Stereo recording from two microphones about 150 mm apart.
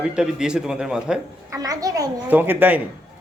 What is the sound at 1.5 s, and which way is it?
Speech, 25° right (ahead or behind).